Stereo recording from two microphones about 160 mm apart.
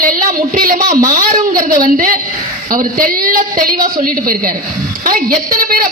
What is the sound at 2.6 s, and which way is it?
A woman's voice, 60° right (ahead or behind).